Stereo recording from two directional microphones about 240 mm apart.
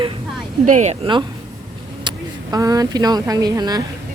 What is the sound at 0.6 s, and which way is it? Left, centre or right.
Speech, right.